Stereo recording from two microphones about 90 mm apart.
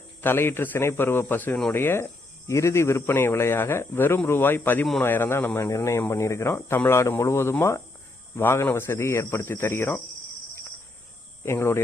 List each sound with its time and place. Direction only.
0.2 s speech: 25° left (ahead or behind)
11.4 s speech: 30° left (ahead or behind)